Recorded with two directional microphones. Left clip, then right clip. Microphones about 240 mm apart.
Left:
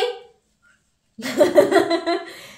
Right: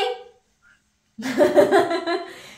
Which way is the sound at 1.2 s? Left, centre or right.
Left.